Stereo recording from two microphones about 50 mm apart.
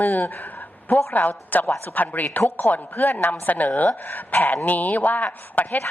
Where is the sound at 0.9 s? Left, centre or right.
Left.